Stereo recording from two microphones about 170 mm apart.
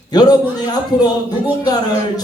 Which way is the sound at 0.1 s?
25° left (ahead or behind).